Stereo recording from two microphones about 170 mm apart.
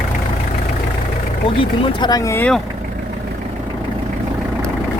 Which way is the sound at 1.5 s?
30° left (ahead or behind).